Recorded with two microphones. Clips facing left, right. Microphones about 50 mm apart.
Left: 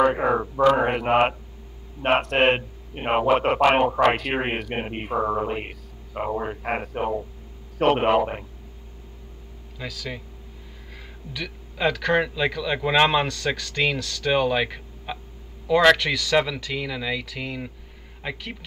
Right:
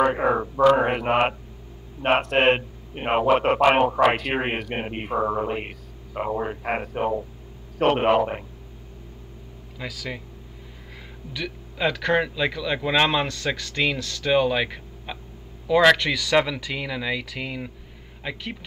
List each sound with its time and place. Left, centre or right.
0.0 s a sound: centre
0.7 s a man's voice: centre
9.8 s speech: centre
11.7 s speech: centre
12.6 s a man's voice: centre
13.6 s speech: centre
14.4 s a man's voice: centre